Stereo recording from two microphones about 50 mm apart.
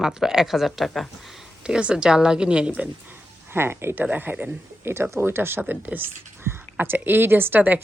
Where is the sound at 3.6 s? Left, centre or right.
Right.